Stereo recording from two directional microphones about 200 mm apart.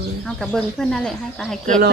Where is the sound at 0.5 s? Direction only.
5° left (ahead or behind).